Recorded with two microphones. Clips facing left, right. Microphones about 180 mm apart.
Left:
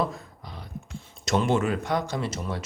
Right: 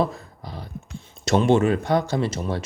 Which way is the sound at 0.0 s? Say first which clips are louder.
Right 4 dB; 35° right (ahead or behind).